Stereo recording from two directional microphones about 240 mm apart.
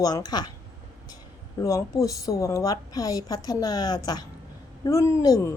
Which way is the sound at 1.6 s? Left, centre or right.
Centre.